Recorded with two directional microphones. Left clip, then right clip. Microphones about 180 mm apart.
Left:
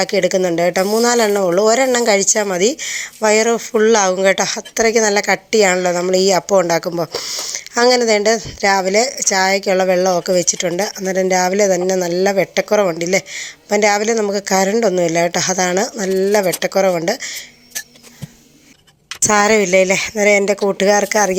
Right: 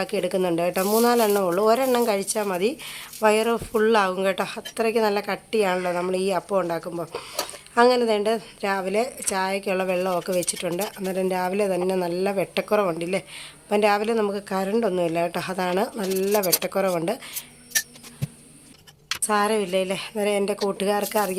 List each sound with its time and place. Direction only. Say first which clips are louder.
0.0 s a woman's voice: left 9 dB; 25° left (ahead or behind)
19.2 s a woman's voice: left 10 dB; 35° left (ahead or behind)